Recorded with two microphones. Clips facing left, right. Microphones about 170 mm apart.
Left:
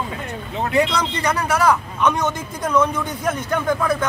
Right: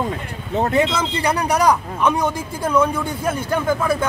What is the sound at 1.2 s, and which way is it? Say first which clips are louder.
Speech: right 1 dB; 15° right (ahead or behind).